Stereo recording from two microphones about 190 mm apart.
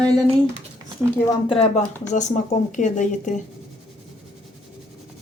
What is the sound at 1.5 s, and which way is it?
Speech, 30° left (ahead or behind).